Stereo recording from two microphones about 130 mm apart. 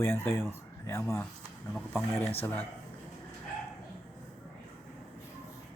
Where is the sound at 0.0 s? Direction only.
20° left (ahead or behind).